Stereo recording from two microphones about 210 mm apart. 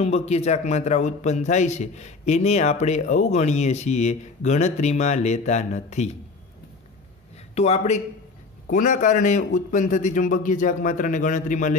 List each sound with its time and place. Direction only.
0.0 s a man's voice: 30° left (ahead or behind)
7.5 s a man's voice: 30° left (ahead or behind)